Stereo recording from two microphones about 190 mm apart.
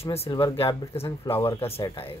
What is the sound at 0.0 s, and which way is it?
Speech, 30° left (ahead or behind).